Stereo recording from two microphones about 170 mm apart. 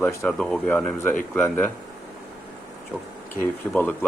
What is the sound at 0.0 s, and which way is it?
Speech, 15° left (ahead or behind).